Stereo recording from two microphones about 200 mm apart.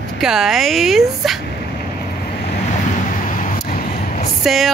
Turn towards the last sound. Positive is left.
turn(degrees=0)  # may be behind; listen again after turning